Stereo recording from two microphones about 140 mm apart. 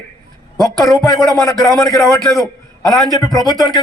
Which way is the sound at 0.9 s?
25° left (ahead or behind).